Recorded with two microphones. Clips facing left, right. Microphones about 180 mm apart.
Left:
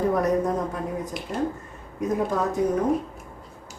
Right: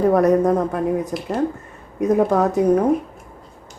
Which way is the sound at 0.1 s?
65° right (ahead or behind).